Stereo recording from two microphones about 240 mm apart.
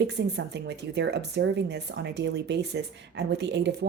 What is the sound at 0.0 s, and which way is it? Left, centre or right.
Speech, right.